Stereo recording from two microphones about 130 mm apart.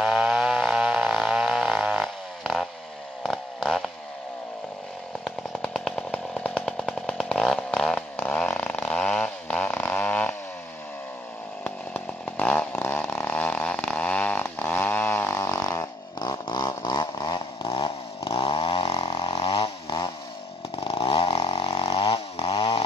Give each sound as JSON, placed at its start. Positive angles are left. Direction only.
{"t": 0.0, "sound": "chainsaw", "side_deg": -5}
{"t": 3.3, "sound": "a sound", "side_deg": 5}
{"t": 5.2, "sound": "chainsaw", "side_deg": 5}
{"t": 11.6, "sound": "chainsaw", "side_deg": 10}
{"t": 18.9, "sound": "vehicle", "side_deg": 40}
{"t": 20.8, "sound": "chainsaw", "side_deg": 45}